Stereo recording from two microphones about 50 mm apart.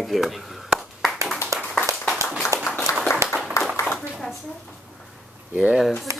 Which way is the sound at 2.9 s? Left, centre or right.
Left.